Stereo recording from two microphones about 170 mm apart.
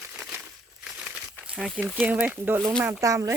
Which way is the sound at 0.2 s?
10° right (ahead or behind).